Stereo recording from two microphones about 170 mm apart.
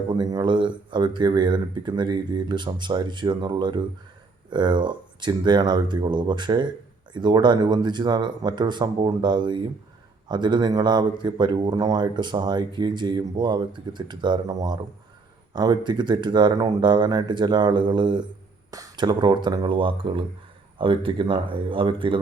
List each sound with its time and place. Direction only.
0.1 s a man's voice: 25° right (ahead or behind)